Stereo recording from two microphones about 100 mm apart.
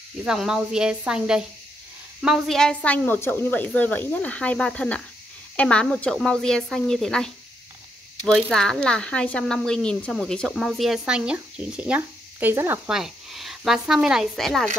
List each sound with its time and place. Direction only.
0.2 s speech: 5° right (ahead or behind)
8.3 s speech: centre (ahead or behind); by 12.8 s 25° right (ahead or behind)
12.8 s speech: 5° right (ahead or behind)